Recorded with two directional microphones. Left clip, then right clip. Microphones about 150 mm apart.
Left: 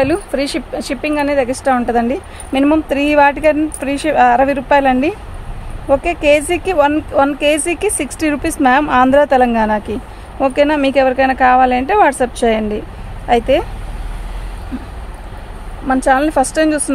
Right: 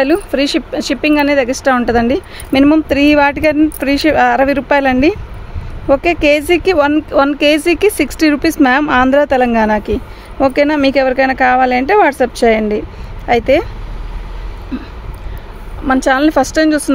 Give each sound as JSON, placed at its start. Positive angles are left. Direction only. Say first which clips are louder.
{"t": 0.0, "sound": "speech", "louder": "right 3 dB", "side_deg": -40}
{"t": 15.9, "sound": "speech", "louder": "right 1 dB", "side_deg": -50}